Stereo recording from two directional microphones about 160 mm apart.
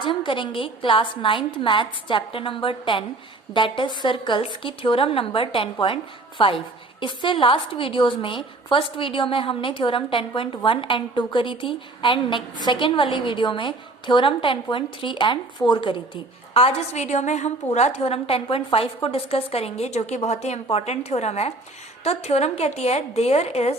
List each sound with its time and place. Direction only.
0.0 s a woman's voice: 30° left (ahead or behind)